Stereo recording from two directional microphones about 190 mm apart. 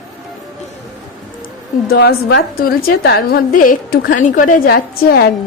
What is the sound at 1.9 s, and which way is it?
A woman's voice, 55° left (ahead or behind).